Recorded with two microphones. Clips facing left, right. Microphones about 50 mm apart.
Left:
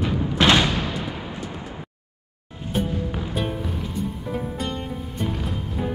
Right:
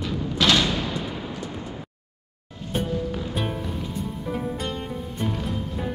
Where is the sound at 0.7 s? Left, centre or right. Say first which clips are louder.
Left 1 dB; centre.